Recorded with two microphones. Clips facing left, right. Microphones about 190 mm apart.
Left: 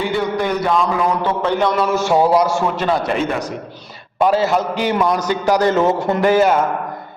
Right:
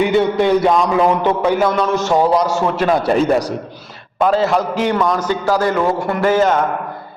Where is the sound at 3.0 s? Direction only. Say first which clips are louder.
Right 5 dB; 35° right (ahead or behind).